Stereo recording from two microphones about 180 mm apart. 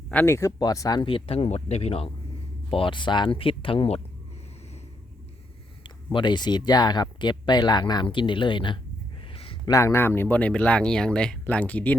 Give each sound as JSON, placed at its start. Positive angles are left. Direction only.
{"t": 0.1, "sound": "speech", "side_deg": 10}
{"t": 5.8, "sound": "speech", "side_deg": 25}
{"t": 9.3, "sound": "a sound", "side_deg": 30}
{"t": 9.7, "sound": "speech", "side_deg": 15}